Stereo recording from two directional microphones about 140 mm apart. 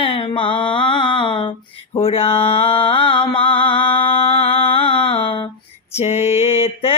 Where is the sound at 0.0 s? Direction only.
40° left (ahead or behind).